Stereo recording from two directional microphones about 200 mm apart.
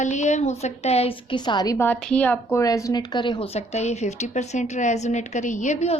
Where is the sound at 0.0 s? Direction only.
35° left (ahead or behind).